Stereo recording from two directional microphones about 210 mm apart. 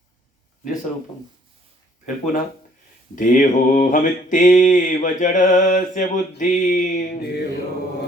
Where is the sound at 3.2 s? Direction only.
40° left (ahead or behind).